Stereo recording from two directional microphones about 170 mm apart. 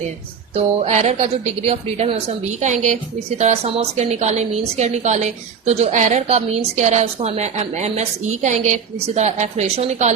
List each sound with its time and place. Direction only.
0.5 s a woman's voice: 40° right (ahead or behind)